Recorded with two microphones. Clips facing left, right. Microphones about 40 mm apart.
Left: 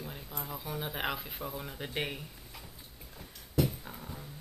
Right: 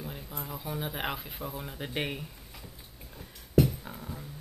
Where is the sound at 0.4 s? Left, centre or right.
Centre.